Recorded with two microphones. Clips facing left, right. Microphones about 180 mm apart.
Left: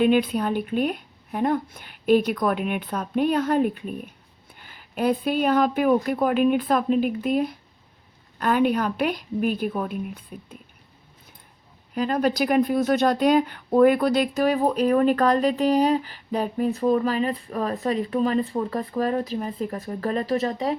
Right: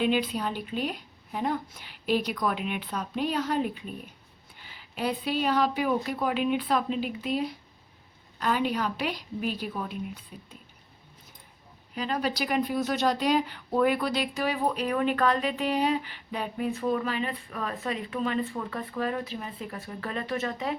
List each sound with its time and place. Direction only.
0.0 s speech: 50° left (ahead or behind)
11.9 s speech: 45° left (ahead or behind)